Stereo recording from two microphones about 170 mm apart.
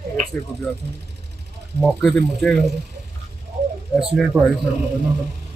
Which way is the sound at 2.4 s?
5° left (ahead or behind).